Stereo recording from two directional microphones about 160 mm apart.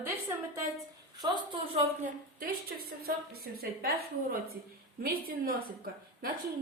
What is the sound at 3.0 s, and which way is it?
A woman's voice, 75° right (ahead or behind).